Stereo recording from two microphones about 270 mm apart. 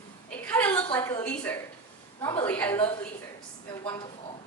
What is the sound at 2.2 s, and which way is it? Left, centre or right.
Speech, centre.